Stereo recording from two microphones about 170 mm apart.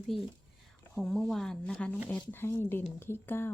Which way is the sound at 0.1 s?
Centre (ahead or behind).